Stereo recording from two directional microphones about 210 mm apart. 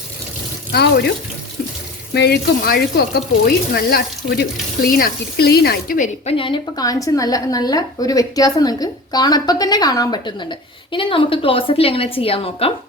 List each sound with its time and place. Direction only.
0.7 s speech: 50° left (ahead or behind)
2.1 s speech: 50° left (ahead or behind)
6.3 s a woman's voice: 25° left (ahead or behind)